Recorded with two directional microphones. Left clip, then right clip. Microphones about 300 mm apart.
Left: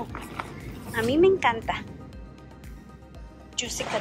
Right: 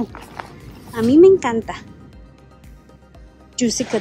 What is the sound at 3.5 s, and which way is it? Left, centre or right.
Speech, right.